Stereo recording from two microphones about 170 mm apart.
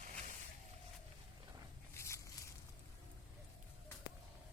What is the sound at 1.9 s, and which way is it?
Zipper, 15° left (ahead or behind).